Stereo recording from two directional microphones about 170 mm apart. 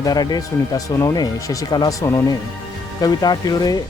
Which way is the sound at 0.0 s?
25° left (ahead or behind).